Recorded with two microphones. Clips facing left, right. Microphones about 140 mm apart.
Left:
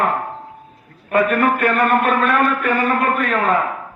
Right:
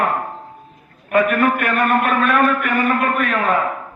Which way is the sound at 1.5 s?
25° left (ahead or behind).